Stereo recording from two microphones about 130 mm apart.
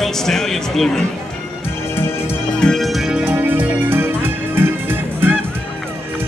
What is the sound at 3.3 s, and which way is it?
Music, 15° right (ahead or behind).